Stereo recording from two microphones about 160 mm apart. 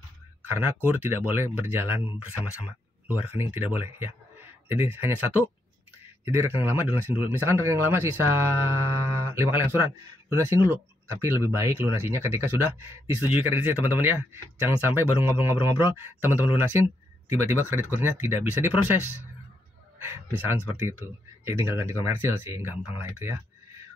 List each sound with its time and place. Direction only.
0.5 s speech: 15° right (ahead or behind)
20.0 s speech: 15° right (ahead or behind)